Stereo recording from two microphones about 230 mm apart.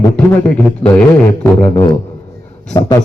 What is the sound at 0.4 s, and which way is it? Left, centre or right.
A man's voice, centre.